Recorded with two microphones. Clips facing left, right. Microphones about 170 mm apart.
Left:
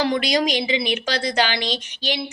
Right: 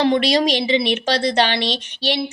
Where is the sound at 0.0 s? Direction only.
30° right (ahead or behind).